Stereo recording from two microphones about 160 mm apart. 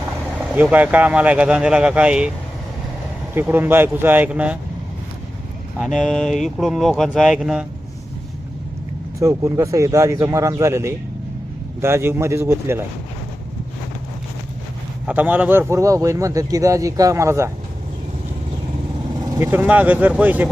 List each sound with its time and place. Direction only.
0.5 s speech: 10° right (ahead or behind)
3.3 s speech: 10° right (ahead or behind)
6.0 s speech: 5° left (ahead or behind)
9.1 s a man's voice: 20° right (ahead or behind)
15.0 s a man's voice: 10° right (ahead or behind)
19.4 s speech: 10° right (ahead or behind)